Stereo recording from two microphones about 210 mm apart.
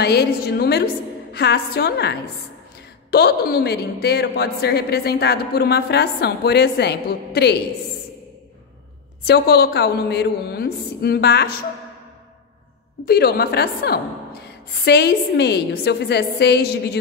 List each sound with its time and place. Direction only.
0.0 s a woman's voice: 50° left (ahead or behind)
9.2 s a woman's voice: 50° left (ahead or behind)
13.0 s a woman's voice: 45° left (ahead or behind)